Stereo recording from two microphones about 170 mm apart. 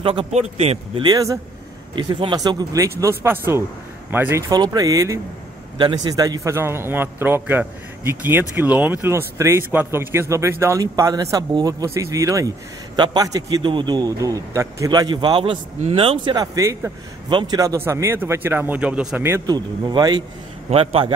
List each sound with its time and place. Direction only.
0.0 s a man's voice: 35° right (ahead or behind)